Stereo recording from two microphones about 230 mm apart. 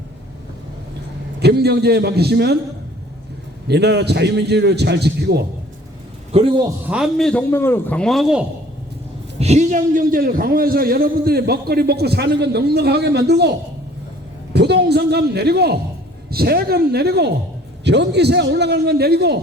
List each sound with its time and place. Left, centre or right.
1.4 s a man's voice: right
3.7 s a man's voice: right
6.3 s a man's voice: right
6.9 s a man's voice: centre
9.4 s a man's voice: right
14.5 s a man's voice: right